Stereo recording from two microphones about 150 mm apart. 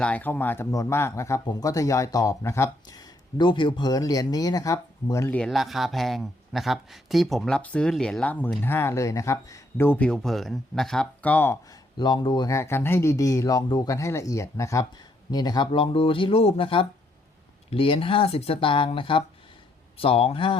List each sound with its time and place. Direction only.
0.0 s speech: 10° left (ahead or behind)
5.3 s speech: 5° left (ahead or behind)
11.9 s speech: 30° left (ahead or behind)
12.5 s speech: 20° left (ahead or behind); by 20.6 s 35° left (ahead or behind)